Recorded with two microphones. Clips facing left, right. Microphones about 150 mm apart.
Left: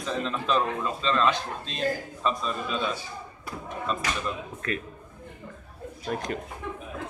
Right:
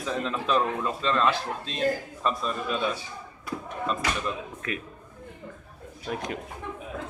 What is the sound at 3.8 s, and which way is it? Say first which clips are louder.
Speech: right 1 dB; 5° right (ahead or behind).